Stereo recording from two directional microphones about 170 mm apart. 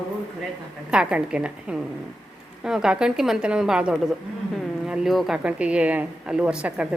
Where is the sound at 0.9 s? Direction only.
5° right (ahead or behind).